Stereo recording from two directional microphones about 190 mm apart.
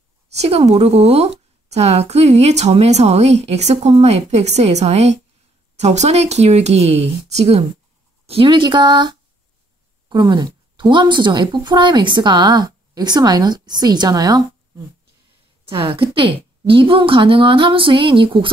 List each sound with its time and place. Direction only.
0.3 s a woman's voice: 35° right (ahead or behind)
15.7 s a woman's voice: 30° right (ahead or behind)